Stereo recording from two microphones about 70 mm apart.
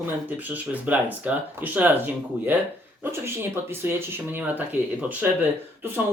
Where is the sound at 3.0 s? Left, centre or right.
Right.